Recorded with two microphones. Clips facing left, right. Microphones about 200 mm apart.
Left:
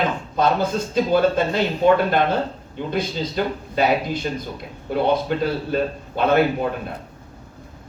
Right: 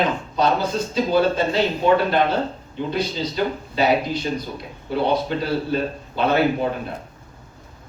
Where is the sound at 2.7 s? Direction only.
50° left (ahead or behind).